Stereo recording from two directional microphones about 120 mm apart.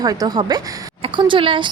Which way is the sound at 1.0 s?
45° right (ahead or behind).